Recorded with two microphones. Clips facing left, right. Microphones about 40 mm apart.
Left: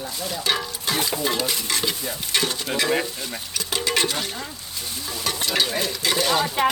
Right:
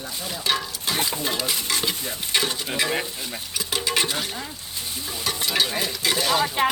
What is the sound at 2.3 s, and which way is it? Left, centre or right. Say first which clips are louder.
Speech: left 1 dB; centre.